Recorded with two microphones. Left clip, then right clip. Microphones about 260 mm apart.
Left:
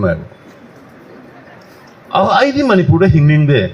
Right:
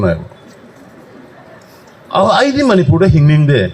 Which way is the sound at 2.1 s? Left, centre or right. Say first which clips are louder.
Right 1 dB; right.